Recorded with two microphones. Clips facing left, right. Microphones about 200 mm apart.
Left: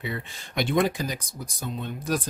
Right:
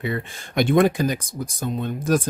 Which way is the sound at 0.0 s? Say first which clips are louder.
Right 6 dB; 50° right (ahead or behind).